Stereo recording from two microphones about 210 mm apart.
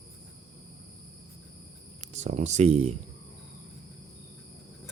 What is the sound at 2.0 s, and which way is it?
Speech, 35° right (ahead or behind).